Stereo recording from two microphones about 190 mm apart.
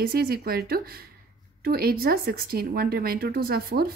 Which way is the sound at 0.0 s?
55° right (ahead or behind).